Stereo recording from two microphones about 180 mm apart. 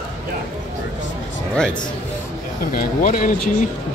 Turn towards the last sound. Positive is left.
turn(degrees=50)  # may be behind; listen again after turning